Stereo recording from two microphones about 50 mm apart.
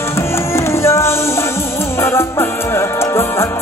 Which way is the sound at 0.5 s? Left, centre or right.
Left.